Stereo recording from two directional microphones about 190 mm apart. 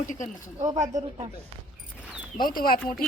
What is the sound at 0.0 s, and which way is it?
Speech, 45° left (ahead or behind).